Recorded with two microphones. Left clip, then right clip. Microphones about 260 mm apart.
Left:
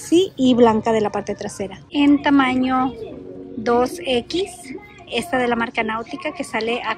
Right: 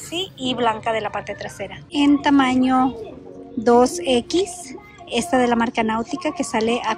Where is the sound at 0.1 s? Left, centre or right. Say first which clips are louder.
Left 9 dB; left.